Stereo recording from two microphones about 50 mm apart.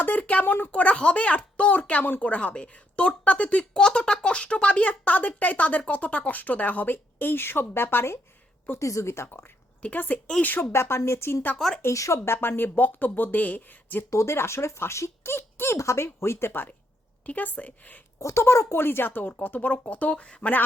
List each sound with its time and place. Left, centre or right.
0.0 s speech: left
3.6 s speech: centre; by 8.1 s left
8.8 s speech: left
9.2 s speech: left
10.7 s speech: left
11.5 s speech: centre
11.8 s speech: left
14.1 s speech: left
15.3 s speech: left
15.8 s speech: left
16.0 s speech: left
17.2 s speech: left
18.2 s speech: left